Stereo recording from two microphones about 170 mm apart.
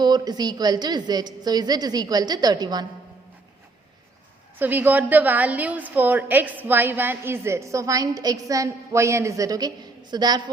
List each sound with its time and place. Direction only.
0.0 s a woman's voice: 25° right (ahead or behind)
4.6 s a woman's voice: 10° right (ahead or behind)